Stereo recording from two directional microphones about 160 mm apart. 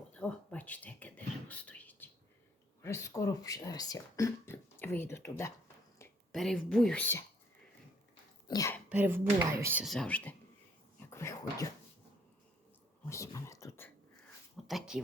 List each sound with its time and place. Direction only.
0.1 s a sound: 10° left (ahead or behind)
2.8 s speech: 15° left (ahead or behind)
6.3 s speech: centre (ahead or behind)
8.4 s speech: 25° left (ahead or behind)
8.9 s speech: 15° right (ahead or behind)
9.8 s speech: 5° left (ahead or behind)
11.1 s a sound: 15° left (ahead or behind)
13.1 s whispering: 20° left (ahead or behind)
14.5 s a sound: centre (ahead or behind)